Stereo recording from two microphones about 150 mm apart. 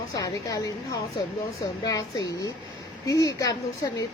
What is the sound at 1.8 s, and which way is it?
A woman's voice, 25° left (ahead or behind).